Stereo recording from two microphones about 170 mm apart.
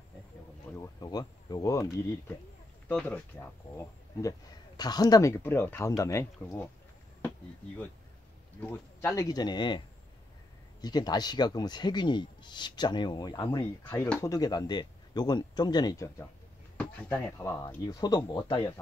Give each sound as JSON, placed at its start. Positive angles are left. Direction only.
{"t": 0.7, "sound": "speech", "side_deg": 20}
{"t": 2.9, "sound": "speech", "side_deg": 5}
{"t": 8.6, "sound": "speech", "side_deg": 15}